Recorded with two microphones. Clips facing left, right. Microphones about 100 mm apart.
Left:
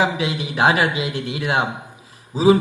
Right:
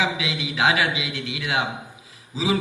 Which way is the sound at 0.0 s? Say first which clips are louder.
Left 5 dB; 40° left (ahead or behind).